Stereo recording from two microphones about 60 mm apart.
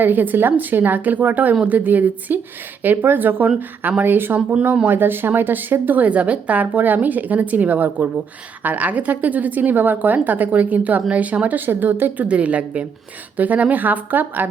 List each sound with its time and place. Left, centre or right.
0.0 s a woman's voice: right